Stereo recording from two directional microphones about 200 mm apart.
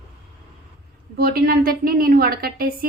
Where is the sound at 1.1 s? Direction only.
50° right (ahead or behind).